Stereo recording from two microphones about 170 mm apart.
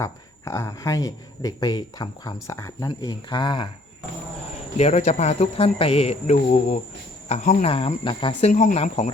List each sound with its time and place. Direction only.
0.0 s speech: 15° left (ahead or behind)
4.8 s speech: 45° left (ahead or behind)